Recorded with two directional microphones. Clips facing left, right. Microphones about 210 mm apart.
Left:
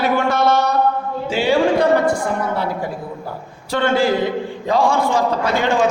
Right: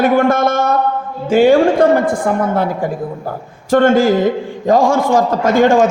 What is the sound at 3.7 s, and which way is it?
A man's voice, 50° right (ahead or behind).